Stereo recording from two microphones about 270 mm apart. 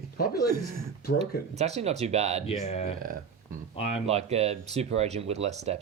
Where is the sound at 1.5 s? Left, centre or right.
Right.